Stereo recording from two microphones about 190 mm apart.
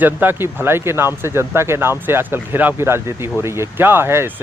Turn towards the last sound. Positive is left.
turn(degrees=-10)  # may be behind; listen again after turning